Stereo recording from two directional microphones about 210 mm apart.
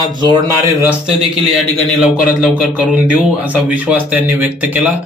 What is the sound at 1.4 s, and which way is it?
A man's voice, centre (ahead or behind).